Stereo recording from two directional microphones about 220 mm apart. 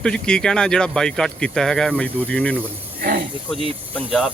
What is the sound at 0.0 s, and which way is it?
Speech, 5° left (ahead or behind).